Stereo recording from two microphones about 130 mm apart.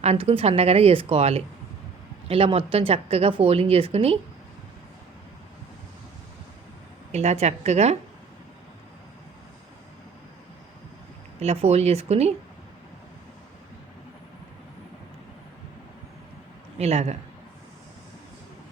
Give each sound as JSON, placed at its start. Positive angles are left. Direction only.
{"t": 0.0, "sound": "speech", "side_deg": -50}
{"t": 7.1, "sound": "a woman's voice", "side_deg": -55}
{"t": 11.3, "sound": "speech", "side_deg": -55}
{"t": 16.7, "sound": "a man's voice", "side_deg": -55}